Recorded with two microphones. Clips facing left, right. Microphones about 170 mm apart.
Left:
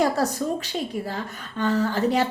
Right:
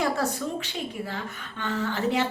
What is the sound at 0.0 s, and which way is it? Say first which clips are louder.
A woman's voice: left 4 dB; 40° left (ahead or behind).